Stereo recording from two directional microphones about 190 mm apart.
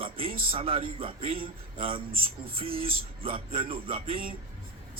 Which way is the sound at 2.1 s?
50° right (ahead or behind).